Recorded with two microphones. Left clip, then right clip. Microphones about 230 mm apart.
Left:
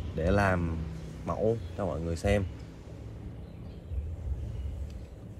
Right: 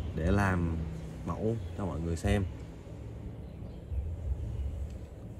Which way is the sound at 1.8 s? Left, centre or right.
Centre.